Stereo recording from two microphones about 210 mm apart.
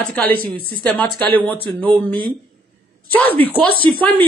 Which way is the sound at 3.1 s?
10° left (ahead or behind).